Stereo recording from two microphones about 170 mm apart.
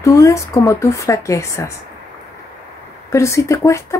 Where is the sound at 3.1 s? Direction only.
15° left (ahead or behind).